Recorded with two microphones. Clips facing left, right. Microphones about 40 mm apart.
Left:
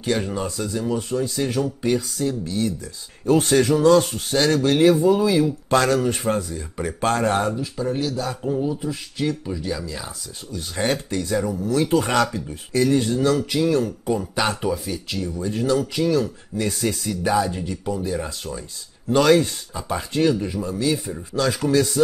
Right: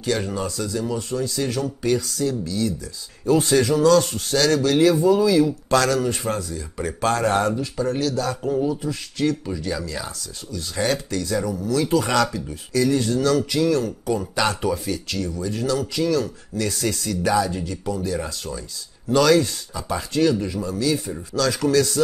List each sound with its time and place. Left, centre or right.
0.2 s speech: left
7.6 s speech: centre
10.5 s speech: left
14.5 s speech: centre
19.1 s speech: left